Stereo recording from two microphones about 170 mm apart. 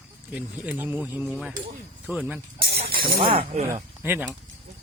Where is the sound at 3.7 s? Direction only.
10° right (ahead or behind).